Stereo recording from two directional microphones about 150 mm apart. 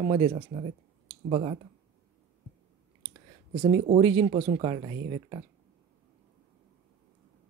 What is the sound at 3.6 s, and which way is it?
Speech, 35° right (ahead or behind).